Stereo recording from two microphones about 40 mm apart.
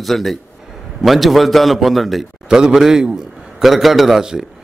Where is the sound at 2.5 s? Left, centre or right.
Centre.